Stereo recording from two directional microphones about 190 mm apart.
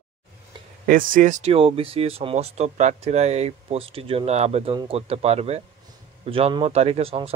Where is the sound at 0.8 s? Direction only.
45° right (ahead or behind).